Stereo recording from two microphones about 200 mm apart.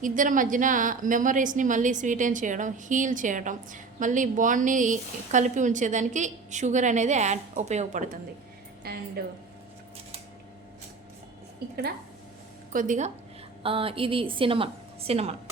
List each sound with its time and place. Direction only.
0.0 s a woman's voice: 40° right (ahead or behind)
8.8 s a woman's voice: 50° right (ahead or behind)
12.7 s a woman's voice: 40° right (ahead or behind)
13.6 s a woman's voice: 25° right (ahead or behind)